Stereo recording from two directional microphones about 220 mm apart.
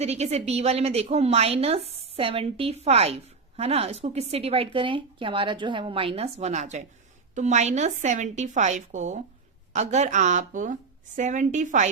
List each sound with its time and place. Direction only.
0.0 s a woman's voice: 30° right (ahead or behind)